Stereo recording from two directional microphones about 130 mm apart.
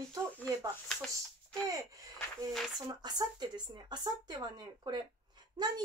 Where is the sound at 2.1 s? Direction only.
Centre (ahead or behind).